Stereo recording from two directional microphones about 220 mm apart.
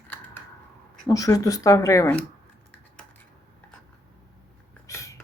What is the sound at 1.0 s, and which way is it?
Speech, 15° left (ahead or behind).